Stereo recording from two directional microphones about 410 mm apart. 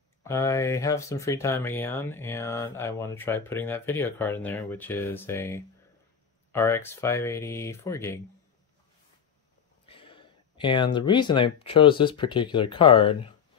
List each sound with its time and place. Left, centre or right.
0.2 s speech: centre
9.8 s speech: centre